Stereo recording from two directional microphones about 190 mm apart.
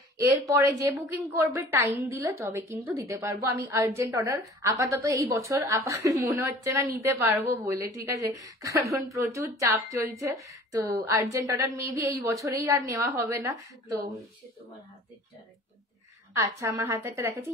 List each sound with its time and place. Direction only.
0.3 s a woman's voice: 15° right (ahead or behind)
16.3 s a woman's voice: 15° right (ahead or behind)